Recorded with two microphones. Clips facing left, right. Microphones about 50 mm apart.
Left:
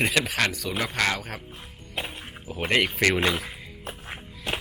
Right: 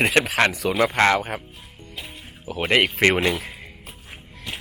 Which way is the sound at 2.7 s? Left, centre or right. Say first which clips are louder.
Right 4 dB; right.